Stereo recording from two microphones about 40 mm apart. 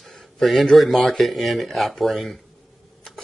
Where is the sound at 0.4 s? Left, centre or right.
Centre.